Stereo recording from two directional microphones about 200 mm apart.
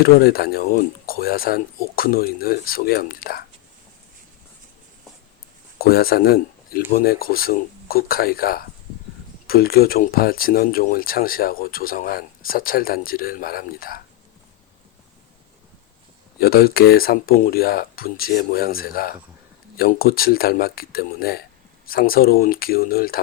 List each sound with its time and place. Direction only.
0.0 s speech: 50° left (ahead or behind)
5.8 s speech: 50° left (ahead or behind)
16.4 s speech: 50° left (ahead or behind)